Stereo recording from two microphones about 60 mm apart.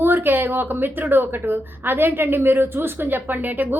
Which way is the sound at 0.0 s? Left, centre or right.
Right.